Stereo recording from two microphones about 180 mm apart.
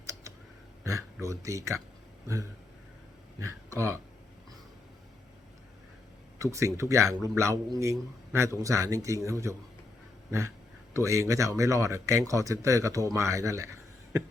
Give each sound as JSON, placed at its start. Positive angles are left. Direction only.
{"t": 0.0, "sound": "a sound", "side_deg": -15}
{"t": 0.9, "sound": "a man's voice", "side_deg": -15}
{"t": 2.2, "sound": "a sound", "side_deg": -15}
{"t": 3.8, "sound": "a man's voice", "side_deg": -15}
{"t": 6.4, "sound": "a man's voice", "side_deg": -15}
{"t": 10.9, "sound": "a man's voice", "side_deg": -15}